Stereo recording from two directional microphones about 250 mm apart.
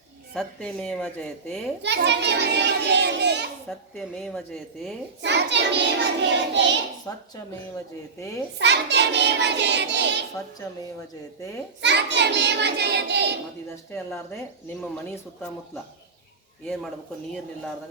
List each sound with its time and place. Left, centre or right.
0.3 s speech: centre
1.8 s a child's voice: right
3.7 s speech: centre
5.2 s a child's voice: right
8.5 s a child's voice: right
11.8 s a child's voice: right
14.8 s speech: centre